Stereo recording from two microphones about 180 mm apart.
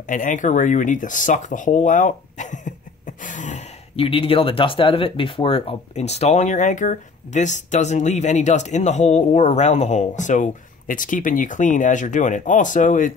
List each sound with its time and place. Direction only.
0.0 s speech: 45° left (ahead or behind)